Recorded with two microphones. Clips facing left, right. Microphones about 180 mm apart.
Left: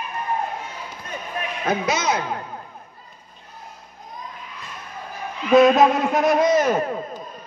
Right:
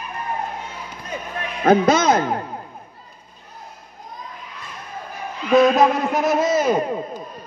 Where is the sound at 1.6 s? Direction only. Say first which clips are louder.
Right 8 dB; 50° right (ahead or behind).